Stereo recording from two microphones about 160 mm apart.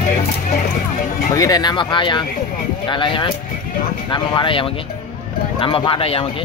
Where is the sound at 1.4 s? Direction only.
25° left (ahead or behind).